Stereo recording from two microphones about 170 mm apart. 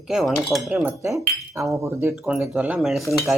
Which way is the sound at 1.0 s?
20° right (ahead or behind).